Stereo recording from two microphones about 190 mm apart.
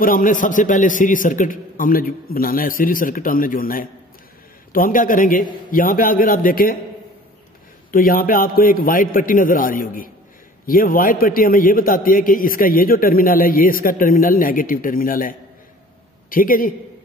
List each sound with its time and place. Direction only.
0.0 s a man's voice: 45° left (ahead or behind)
7.9 s a man's voice: 50° left (ahead or behind)